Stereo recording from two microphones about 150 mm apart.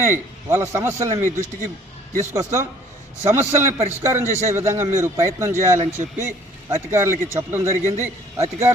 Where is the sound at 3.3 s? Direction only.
15° right (ahead or behind).